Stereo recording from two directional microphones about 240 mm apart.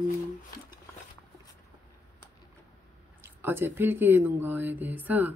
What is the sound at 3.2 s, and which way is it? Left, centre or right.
Speech, centre.